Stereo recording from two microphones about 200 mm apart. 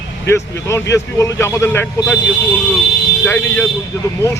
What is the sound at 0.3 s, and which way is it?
Speech, 15° left (ahead or behind).